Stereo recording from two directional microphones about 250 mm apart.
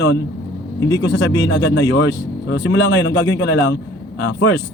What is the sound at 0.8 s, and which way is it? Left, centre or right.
Speech, centre.